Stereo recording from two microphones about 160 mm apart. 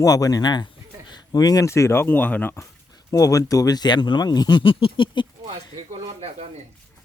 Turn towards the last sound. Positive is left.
turn(degrees=-40)  # may be behind; listen again after turning